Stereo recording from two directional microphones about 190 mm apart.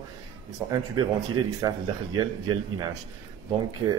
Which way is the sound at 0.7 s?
20° right (ahead or behind).